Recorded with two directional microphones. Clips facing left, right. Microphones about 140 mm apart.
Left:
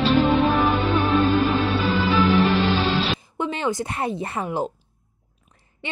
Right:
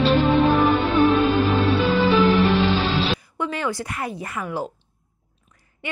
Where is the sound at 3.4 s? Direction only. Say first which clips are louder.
Left 4 dB; 20° left (ahead or behind).